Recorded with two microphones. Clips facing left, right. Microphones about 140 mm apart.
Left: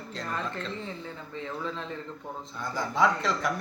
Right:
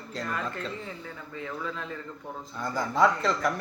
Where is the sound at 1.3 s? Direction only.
25° left (ahead or behind).